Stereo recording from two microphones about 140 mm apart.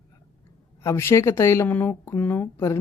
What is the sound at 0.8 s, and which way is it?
A woman's voice, 20° left (ahead or behind).